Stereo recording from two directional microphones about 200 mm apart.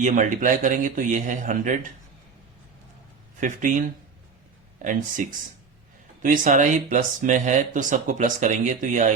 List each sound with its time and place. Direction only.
0.0 s speech: 40° right (ahead or behind)
3.4 s speech: 40° right (ahead or behind)